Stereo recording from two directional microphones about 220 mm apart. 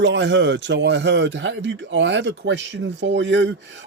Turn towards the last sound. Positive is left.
turn(degrees=-55)  # may be behind; listen again after turning